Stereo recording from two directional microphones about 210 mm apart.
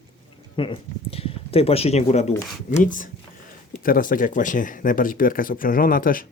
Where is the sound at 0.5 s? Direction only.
25° left (ahead or behind).